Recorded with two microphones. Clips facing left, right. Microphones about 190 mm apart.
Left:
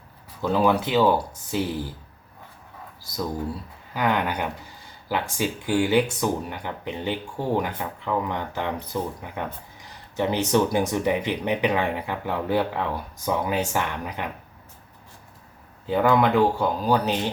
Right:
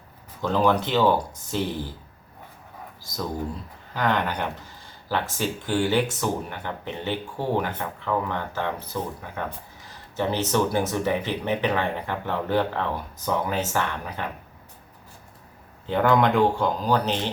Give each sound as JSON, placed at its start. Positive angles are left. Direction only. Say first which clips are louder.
{"t": 0.4, "sound": "speech", "louder": "left 1 dB", "side_deg": 10}
{"t": 3.9, "sound": "speech", "louder": "left 1 dB", "side_deg": 10}
{"t": 15.9, "sound": "speech", "louder": "left 1 dB", "side_deg": 5}